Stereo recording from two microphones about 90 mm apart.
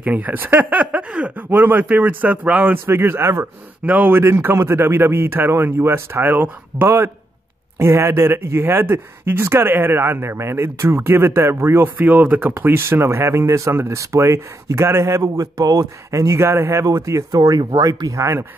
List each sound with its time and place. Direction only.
0.0 s speech: 20° right (ahead or behind)
3.8 s speech: 20° right (ahead or behind)
15.2 s speech: 45° right (ahead or behind)